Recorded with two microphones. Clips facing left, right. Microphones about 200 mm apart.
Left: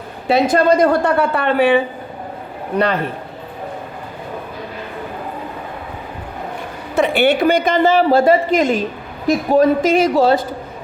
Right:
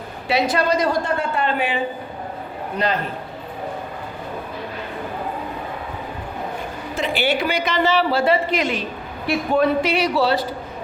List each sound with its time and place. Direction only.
0.3 s a woman's voice: 50° left (ahead or behind)
6.9 s a woman's voice: 60° left (ahead or behind)